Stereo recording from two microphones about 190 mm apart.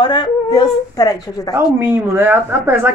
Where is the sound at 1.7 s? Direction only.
10° right (ahead or behind).